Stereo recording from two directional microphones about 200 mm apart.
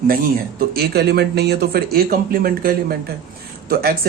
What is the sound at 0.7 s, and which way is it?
Speech, 50° right (ahead or behind).